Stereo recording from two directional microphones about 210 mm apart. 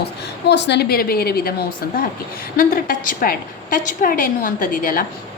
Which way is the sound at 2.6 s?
40° left (ahead or behind).